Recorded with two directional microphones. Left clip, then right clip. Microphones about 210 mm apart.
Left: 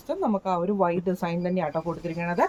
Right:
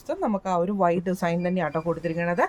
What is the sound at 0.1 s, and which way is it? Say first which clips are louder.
Speech: even; 60° right (ahead or behind).